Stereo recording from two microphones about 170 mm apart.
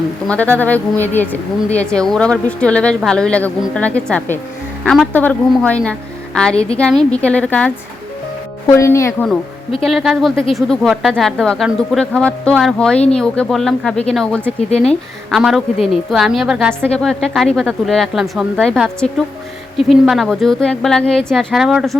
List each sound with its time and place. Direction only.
0.3 s speech: 10° left (ahead or behind)
9.8 s speech: centre (ahead or behind)